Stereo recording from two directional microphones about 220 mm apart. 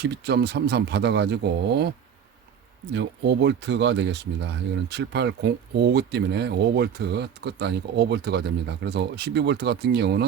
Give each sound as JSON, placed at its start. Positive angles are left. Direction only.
{"t": 0.0, "sound": "speech", "side_deg": -50}
{"t": 2.9, "sound": "speech", "side_deg": -50}